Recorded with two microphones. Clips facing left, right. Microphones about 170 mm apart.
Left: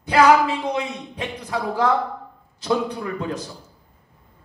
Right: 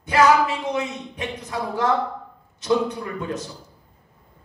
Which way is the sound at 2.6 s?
30° left (ahead or behind).